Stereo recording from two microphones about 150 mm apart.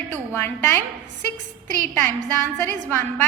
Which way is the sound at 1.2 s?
55° right (ahead or behind).